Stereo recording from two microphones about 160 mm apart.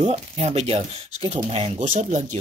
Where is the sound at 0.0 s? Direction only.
40° right (ahead or behind).